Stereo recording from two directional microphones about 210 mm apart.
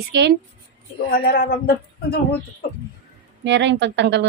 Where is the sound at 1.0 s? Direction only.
50° left (ahead or behind).